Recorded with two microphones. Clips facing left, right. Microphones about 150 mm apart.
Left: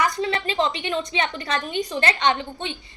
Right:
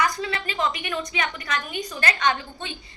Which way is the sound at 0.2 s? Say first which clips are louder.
Left 4 dB; 30° left (ahead or behind).